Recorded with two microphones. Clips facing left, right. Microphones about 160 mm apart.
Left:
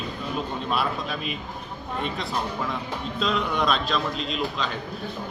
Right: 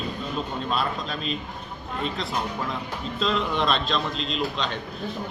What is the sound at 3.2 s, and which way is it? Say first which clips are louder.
Speech: even; centre (ahead or behind).